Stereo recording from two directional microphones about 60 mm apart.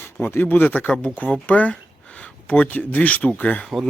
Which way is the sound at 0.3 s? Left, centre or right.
Left.